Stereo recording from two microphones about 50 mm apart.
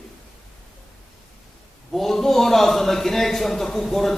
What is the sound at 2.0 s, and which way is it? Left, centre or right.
A man's voice, centre.